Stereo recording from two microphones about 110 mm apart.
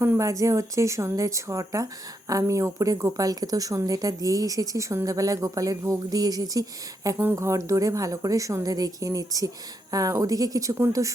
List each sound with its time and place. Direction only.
0.0 s speech: 25° right (ahead or behind)